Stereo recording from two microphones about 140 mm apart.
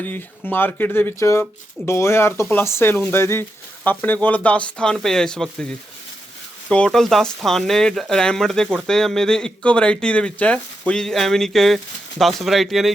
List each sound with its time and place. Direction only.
0.0 s speech: 15° left (ahead or behind)